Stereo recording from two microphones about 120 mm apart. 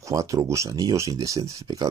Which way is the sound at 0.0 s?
25° right (ahead or behind).